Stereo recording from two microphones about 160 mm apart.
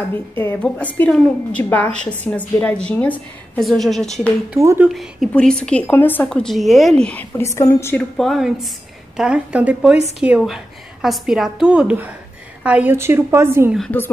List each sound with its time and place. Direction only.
0.1 s a woman's voice: 15° left (ahead or behind)
4.6 s a woman's voice: 20° right (ahead or behind)
4.8 s a woman's voice: centre (ahead or behind); by 13.7 s 15° right (ahead or behind)
13.7 s a woman's voice: 10° left (ahead or behind)